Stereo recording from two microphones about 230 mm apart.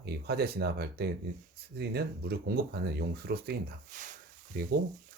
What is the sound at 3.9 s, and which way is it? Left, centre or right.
Speech, right.